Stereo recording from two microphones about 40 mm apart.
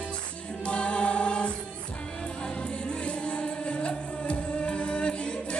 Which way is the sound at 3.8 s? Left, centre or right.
Left.